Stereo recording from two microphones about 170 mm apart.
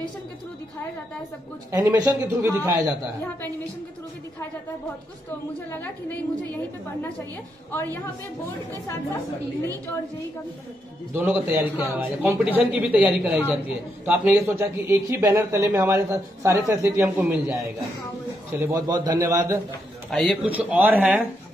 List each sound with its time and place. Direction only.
1.7 s a man's voice: 15° right (ahead or behind)
5.7 s a woman's voice: 10° left (ahead or behind)
7.7 s a woman's voice: 10° left (ahead or behind)
11.1 s a man's voice: 10° right (ahead or behind)
18.6 s a man's voice: 15° right (ahead or behind)
20.1 s a man's voice: centre (ahead or behind)
20.5 s a man's voice: 10° right (ahead or behind)